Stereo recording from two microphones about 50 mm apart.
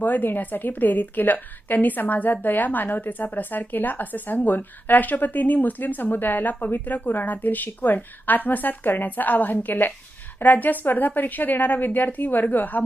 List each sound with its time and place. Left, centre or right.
0.0 s speech: left